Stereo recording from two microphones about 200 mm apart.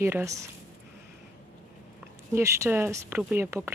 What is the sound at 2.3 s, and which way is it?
Speech, 15° right (ahead or behind).